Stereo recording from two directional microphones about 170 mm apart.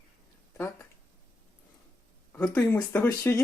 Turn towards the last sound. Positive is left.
turn(degrees=10)  # may be behind; listen again after turning